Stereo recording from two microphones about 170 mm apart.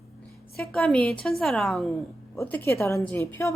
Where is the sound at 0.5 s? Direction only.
5° left (ahead or behind).